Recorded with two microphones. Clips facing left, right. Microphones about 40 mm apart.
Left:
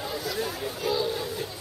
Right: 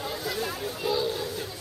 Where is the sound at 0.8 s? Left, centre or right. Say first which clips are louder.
Even; centre.